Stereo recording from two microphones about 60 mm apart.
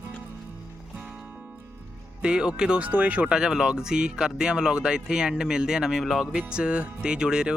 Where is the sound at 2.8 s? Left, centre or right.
Right.